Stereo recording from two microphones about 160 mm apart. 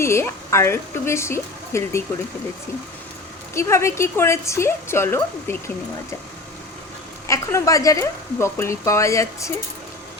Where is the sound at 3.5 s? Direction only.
15° left (ahead or behind).